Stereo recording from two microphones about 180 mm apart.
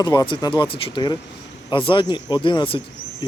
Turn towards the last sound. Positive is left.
turn(degrees=25)  # may be behind; listen again after turning